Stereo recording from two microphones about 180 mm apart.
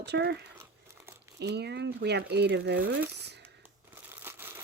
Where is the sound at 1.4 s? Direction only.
70° right (ahead or behind).